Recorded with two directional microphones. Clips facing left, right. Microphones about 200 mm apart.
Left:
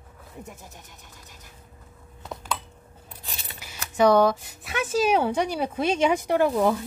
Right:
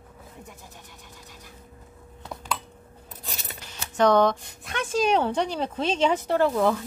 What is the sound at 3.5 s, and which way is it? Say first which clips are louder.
Speech: left 1 dB; 10° left (ahead or behind).